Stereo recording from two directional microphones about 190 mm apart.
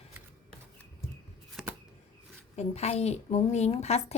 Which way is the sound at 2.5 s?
35° left (ahead or behind).